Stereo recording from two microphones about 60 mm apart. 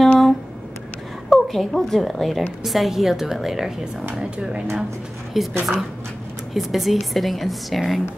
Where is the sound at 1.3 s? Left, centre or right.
Centre.